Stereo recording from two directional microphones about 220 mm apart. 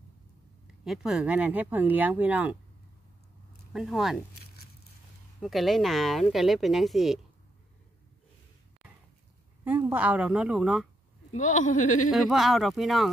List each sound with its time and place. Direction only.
0.8 s speech: centre (ahead or behind)
3.7 s speech: centre (ahead or behind)
5.4 s speech: centre (ahead or behind)
9.7 s speech: 10° right (ahead or behind)
11.3 s speech: 35° left (ahead or behind)
12.1 s speech: centre (ahead or behind)